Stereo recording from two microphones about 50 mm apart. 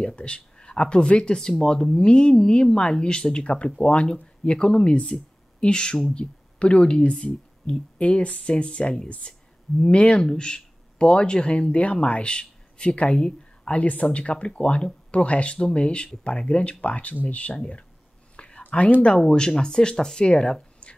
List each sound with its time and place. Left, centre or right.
0.0 s speech: left
18.3 s whispering: left
19.0 s speech: centre